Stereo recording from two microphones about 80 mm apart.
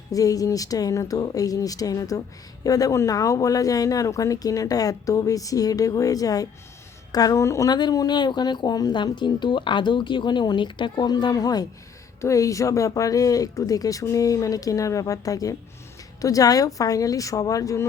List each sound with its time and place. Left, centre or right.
0.1 s speech: left
7.4 s speech: left
7.7 s speech: left
9.1 s speech: left
12.2 s speech: left